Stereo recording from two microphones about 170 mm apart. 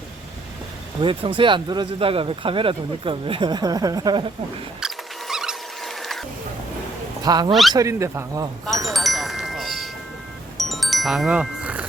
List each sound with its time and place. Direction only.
1.0 s speech: 30° right (ahead or behind)
4.8 s rodents: 5° right (ahead or behind)
7.3 s speech: 25° right (ahead or behind)
8.9 s chime: centre (ahead or behind)
10.6 s music: centre (ahead or behind)